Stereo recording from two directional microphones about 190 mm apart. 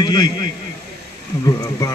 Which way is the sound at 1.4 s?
20° left (ahead or behind).